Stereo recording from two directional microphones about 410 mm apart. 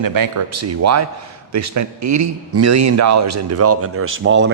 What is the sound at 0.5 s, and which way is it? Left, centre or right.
A man's voice, right.